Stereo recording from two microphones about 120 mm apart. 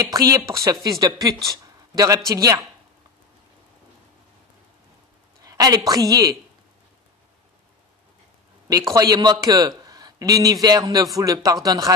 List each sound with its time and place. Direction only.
0.0 s speech: 30° right (ahead or behind)
5.4 s a woman's voice: 30° right (ahead or behind)
8.9 s a man's voice: 30° right (ahead or behind)